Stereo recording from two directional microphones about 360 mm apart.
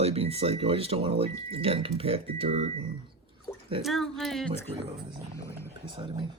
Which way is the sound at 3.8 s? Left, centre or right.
Centre.